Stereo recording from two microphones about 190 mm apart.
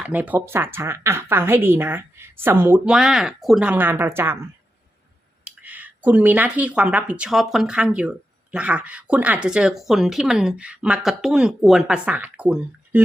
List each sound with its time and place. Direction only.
0.0 s speech: 10° right (ahead or behind)
5.5 s speech: 10° right (ahead or behind)